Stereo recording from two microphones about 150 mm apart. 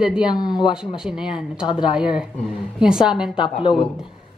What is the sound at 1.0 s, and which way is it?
Speech, 5° right (ahead or behind).